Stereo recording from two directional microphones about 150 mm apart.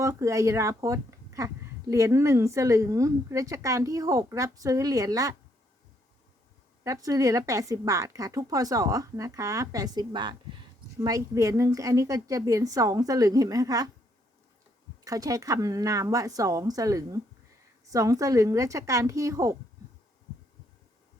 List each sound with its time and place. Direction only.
0.0 s a woman's voice: 20° right (ahead or behind)
6.8 s a woman's voice: 25° right (ahead or behind)
15.0 s a woman's voice: 20° right (ahead or behind)